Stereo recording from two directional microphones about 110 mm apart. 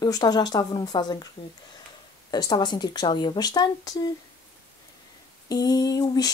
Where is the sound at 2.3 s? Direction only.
40° left (ahead or behind).